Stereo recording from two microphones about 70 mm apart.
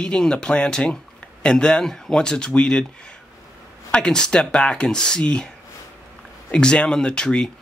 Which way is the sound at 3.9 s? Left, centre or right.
Centre.